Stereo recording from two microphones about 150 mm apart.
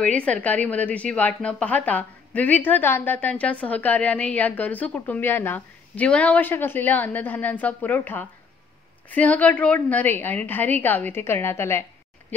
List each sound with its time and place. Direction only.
0.0 s a woman's voice: 10° left (ahead or behind)